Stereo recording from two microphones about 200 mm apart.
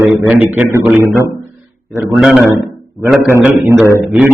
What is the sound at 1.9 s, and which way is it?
A man's voice, 5° right (ahead or behind).